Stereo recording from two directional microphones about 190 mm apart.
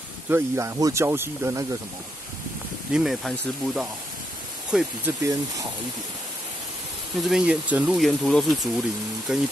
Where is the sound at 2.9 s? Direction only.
Centre (ahead or behind).